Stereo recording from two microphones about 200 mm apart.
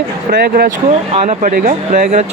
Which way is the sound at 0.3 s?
50° right (ahead or behind).